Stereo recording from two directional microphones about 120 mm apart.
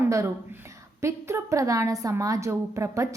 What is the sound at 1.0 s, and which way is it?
A woman's voice, 25° right (ahead or behind).